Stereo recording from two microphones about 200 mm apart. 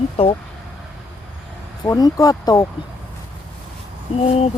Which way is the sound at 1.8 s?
20° left (ahead or behind).